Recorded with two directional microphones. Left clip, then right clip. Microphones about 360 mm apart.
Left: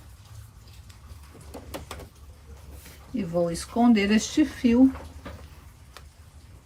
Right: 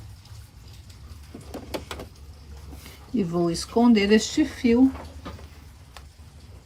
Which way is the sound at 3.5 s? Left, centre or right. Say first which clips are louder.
Right 5 dB; centre.